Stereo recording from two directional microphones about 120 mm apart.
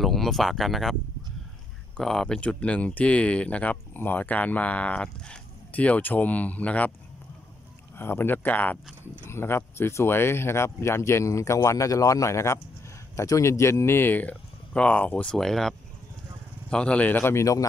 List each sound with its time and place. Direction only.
0.0 s speech: centre (ahead or behind)
2.0 s speech: 5° left (ahead or behind)
8.0 s speech: 20° left (ahead or behind); by 15.7 s centre (ahead or behind)
16.7 s speech: 10° left (ahead or behind); by 17.6 s 25° left (ahead or behind)